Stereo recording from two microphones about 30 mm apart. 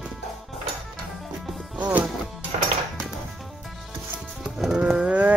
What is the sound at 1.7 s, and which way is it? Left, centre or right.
Music, right.